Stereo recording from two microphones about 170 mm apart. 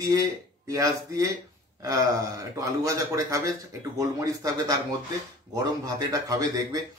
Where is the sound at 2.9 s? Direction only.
20° right (ahead or behind).